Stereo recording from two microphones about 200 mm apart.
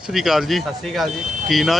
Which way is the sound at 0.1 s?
Centre (ahead or behind).